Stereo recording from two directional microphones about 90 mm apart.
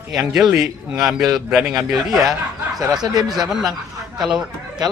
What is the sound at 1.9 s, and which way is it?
Speech, 45° right (ahead or behind).